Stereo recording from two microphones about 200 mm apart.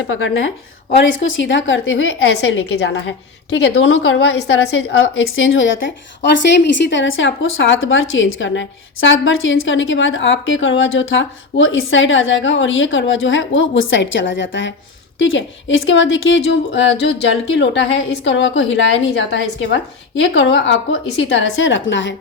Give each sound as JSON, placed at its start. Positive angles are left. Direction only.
{"t": 0.1, "sound": "a woman's voice", "side_deg": 75}
{"t": 6.8, "sound": "a woman's voice", "side_deg": 65}